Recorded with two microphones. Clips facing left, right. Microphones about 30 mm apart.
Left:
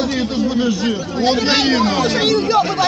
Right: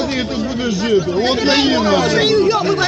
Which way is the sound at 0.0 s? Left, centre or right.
Right.